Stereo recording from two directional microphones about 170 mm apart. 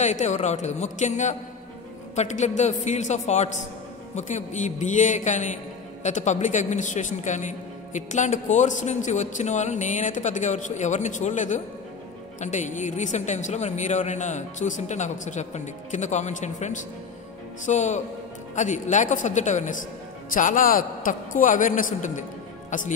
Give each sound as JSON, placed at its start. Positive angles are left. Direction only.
{"t": 0.0, "sound": "speech", "side_deg": 45}